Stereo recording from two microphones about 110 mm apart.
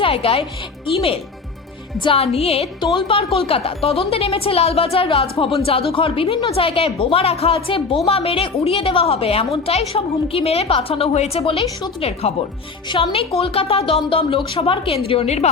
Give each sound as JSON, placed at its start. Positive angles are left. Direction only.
{"t": 0.0, "sound": "speech", "side_deg": 55}
{"t": 2.0, "sound": "a woman's voice", "side_deg": 55}
{"t": 2.8, "sound": "a woman's voice", "side_deg": 50}
{"t": 11.4, "sound": "a woman's voice", "side_deg": 55}